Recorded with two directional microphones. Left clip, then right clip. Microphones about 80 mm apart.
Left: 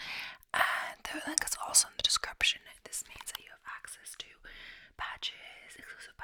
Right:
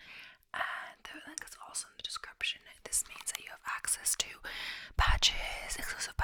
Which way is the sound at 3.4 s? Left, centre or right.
Right.